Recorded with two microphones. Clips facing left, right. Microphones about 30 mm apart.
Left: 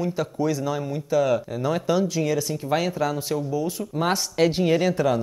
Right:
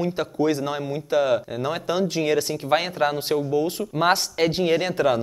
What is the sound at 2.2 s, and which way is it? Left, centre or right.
Speech, right.